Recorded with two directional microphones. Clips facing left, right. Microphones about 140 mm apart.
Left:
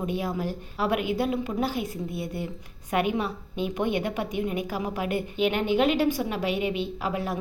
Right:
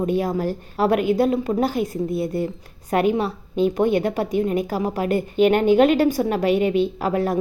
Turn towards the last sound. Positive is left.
turn(degrees=-45)  # may be behind; listen again after turning